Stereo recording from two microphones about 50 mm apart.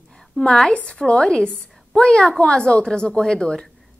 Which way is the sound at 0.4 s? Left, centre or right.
Centre.